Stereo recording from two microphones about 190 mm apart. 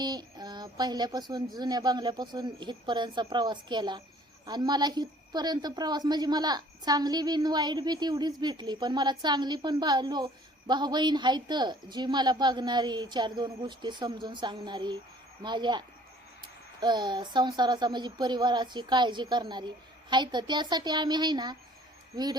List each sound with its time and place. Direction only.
0.0 s a woman's voice: 20° right (ahead or behind)